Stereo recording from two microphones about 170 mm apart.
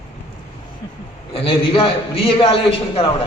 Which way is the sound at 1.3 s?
35° left (ahead or behind).